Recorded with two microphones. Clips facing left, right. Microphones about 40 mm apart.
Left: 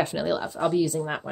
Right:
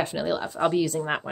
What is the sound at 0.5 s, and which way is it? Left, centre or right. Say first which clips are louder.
Speech: right 1 dB; right.